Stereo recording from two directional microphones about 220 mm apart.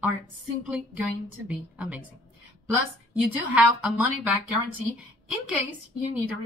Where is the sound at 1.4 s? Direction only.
5° right (ahead or behind).